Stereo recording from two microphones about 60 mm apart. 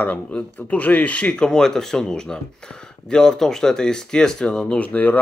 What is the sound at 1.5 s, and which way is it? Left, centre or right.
Speech, centre.